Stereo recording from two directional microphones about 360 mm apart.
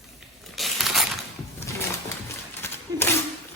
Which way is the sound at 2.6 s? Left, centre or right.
Centre.